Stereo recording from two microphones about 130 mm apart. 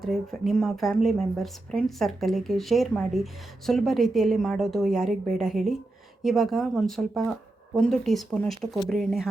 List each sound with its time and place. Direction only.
0.0 s speech: centre (ahead or behind)